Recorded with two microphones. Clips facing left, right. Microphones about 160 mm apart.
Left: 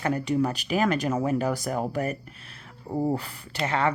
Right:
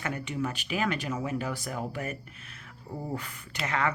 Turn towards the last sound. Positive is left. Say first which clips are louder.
# left 4 dB
turn(degrees=30)  # may be behind; listen again after turning